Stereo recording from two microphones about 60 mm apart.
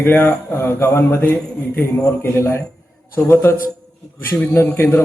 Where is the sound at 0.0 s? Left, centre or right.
Left.